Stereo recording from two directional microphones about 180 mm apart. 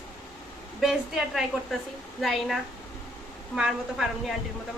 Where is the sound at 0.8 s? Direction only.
Centre (ahead or behind).